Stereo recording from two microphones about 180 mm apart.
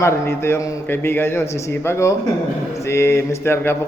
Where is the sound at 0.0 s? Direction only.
15° left (ahead or behind).